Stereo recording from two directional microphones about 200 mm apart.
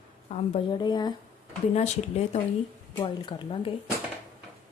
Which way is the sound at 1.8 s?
35° left (ahead or behind).